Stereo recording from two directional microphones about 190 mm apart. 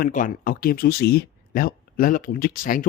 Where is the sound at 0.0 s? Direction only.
45° left (ahead or behind).